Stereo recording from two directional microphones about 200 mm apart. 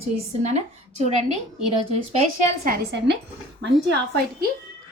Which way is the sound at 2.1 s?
40° right (ahead or behind).